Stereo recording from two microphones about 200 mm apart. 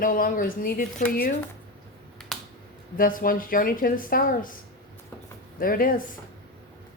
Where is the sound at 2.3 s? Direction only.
Centre (ahead or behind).